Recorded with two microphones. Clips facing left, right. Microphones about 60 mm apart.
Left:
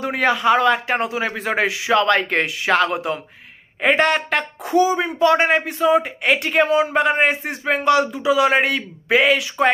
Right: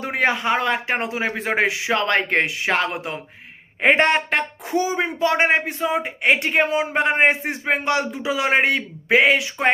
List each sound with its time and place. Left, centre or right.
0.0 s a man's voice: right